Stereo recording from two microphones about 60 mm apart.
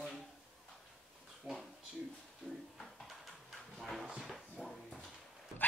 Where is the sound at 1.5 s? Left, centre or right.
Centre.